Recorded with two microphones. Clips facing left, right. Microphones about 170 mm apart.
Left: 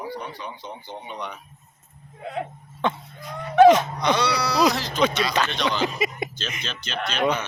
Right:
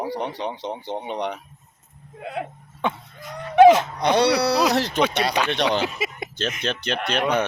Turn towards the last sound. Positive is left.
turn(degrees=-65)  # may be behind; listen again after turning